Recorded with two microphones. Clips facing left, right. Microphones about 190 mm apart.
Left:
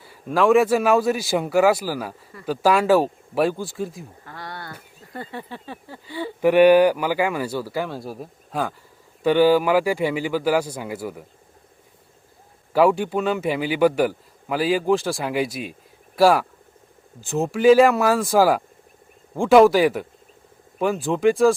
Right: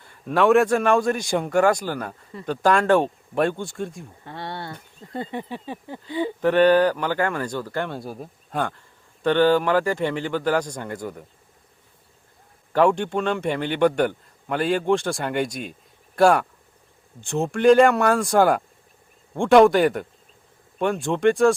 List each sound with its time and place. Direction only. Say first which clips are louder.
0.0 s a man's voice: even; 5° left (ahead or behind)
4.2 s speech: right 5 dB; 25° right (ahead or behind)
6.4 s speech: left 3 dB; 10° left (ahead or behind)
12.7 s a man's voice: left 1 dB; 5° left (ahead or behind)